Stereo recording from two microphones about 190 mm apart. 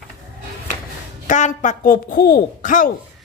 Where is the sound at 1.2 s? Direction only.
40° left (ahead or behind).